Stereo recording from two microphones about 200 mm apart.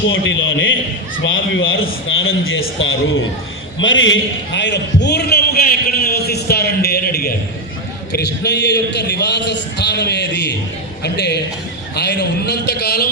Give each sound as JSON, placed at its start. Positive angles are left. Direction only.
{"t": 0.1, "sound": "a man's voice", "side_deg": 75}
{"t": 3.8, "sound": "a man's voice", "side_deg": 70}